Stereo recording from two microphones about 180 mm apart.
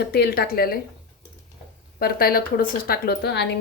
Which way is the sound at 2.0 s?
55° left (ahead or behind).